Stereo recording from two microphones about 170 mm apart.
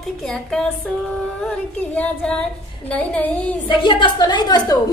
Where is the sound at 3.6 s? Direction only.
30° left (ahead or behind).